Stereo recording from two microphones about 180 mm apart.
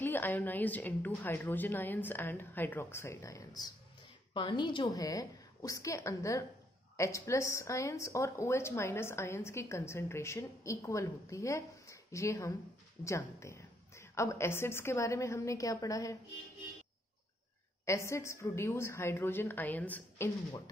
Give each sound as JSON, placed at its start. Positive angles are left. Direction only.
{"t": 0.0, "sound": "a woman's voice", "side_deg": 10}
{"t": 17.8, "sound": "a woman's voice", "side_deg": 15}